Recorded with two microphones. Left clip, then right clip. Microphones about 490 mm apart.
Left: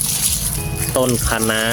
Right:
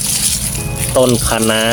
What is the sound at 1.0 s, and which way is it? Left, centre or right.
Speech, left.